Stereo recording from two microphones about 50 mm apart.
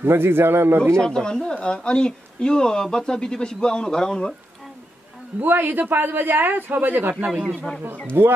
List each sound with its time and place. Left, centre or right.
0.0 s a man's voice: right
0.9 s speech: centre
5.4 s speech: right
8.2 s speech: right